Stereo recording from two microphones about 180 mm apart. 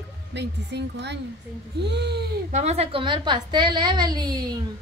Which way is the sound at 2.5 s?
35° right (ahead or behind).